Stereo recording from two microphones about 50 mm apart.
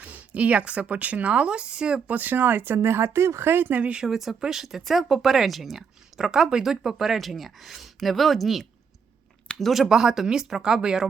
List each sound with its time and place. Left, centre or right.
0.0 s speech: right
2.1 s speech: right
3.5 s speech: right
4.0 s speech: centre
9.9 s speech: centre